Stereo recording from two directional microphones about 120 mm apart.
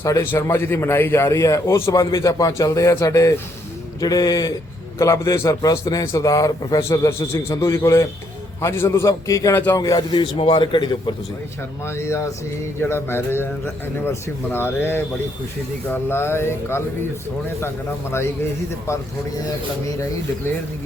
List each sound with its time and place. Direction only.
0.0 s a man's voice: 20° left (ahead or behind); by 11.1 s 40° left (ahead or behind)
11.9 s a man's voice: 25° left (ahead or behind)